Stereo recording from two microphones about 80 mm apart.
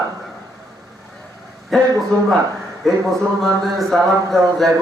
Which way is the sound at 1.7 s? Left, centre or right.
Centre.